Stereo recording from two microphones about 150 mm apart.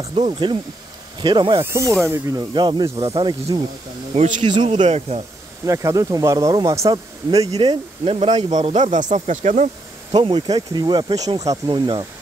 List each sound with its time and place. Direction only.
0.0 s speech: 40° right (ahead or behind)
1.6 s speech: 20° right (ahead or behind)
4.1 s speech: 50° right (ahead or behind)
4.5 s speech: 35° right (ahead or behind)
4.7 s speech: 45° right (ahead or behind)
5.7 s speech: 20° right (ahead or behind); by 9.7 s 50° right (ahead or behind)
10.1 s speech: 35° right (ahead or behind)